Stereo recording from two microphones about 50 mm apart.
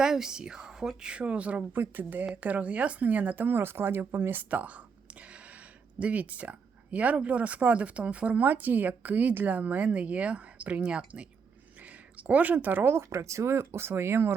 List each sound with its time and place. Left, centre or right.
0.0 s a woman's voice: centre
11.8 s a sound: right
12.9 s speech: right